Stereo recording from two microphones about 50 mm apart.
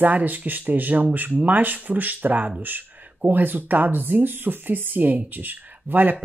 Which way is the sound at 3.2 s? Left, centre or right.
Right.